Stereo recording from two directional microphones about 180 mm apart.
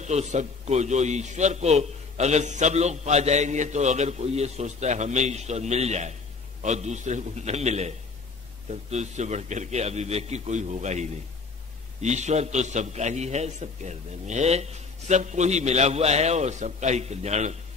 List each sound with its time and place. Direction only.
0.0 s a man's voice: 40° right (ahead or behind)